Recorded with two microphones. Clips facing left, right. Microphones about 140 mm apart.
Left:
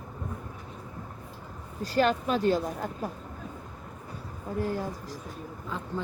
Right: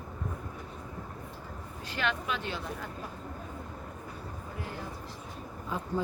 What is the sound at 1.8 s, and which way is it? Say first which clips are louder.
Speech: left 9 dB; 40° left (ahead or behind).